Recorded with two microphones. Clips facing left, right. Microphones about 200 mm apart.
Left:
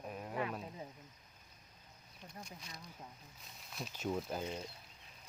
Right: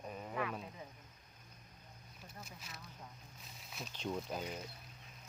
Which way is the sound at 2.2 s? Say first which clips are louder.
Left 2 dB; 5° right (ahead or behind).